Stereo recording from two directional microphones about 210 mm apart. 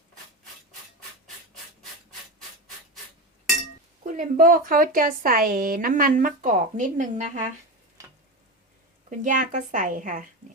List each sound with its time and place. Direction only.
4.0 s speech: 40° right (ahead or behind)
9.0 s speech: 40° right (ahead or behind)